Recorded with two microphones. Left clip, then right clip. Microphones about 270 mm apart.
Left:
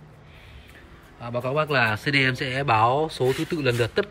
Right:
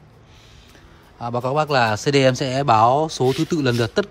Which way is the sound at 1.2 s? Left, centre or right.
Centre.